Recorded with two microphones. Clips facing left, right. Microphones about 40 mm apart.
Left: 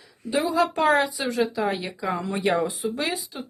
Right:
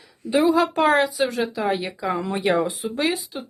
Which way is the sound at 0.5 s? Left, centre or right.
Centre.